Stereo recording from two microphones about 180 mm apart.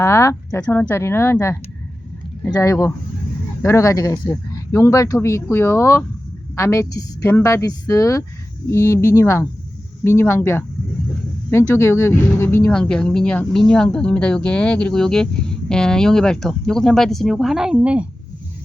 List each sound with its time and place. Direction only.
0.0 s speech: 15° left (ahead or behind); by 18.0 s 5° right (ahead or behind)